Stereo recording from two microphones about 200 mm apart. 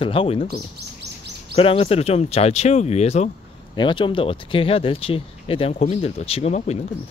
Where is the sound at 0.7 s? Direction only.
55° right (ahead or behind).